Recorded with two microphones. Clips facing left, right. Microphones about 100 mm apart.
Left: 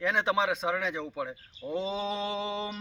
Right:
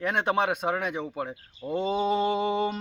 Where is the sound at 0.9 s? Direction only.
15° right (ahead or behind).